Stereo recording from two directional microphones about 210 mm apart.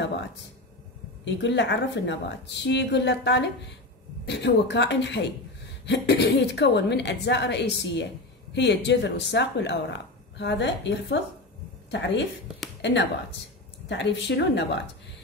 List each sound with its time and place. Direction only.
1.2 s a woman's voice: 55° left (ahead or behind)
13.8 s a woman's voice: 55° left (ahead or behind)